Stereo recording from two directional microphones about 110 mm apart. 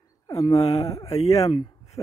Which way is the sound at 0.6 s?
75° left (ahead or behind).